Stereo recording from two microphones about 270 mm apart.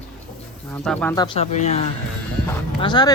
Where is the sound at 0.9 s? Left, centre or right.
Centre.